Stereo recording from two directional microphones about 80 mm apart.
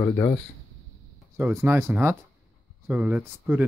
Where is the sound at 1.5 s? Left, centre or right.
Right.